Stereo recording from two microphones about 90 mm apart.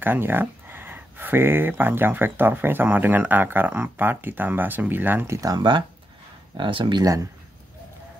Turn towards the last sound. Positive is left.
turn(degrees=-65)  # may be behind; listen again after turning